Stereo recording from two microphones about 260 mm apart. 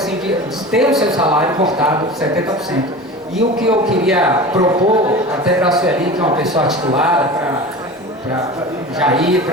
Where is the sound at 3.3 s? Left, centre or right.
Centre.